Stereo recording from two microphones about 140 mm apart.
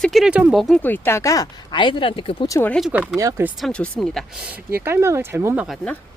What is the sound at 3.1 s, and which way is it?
Speech, 20° right (ahead or behind).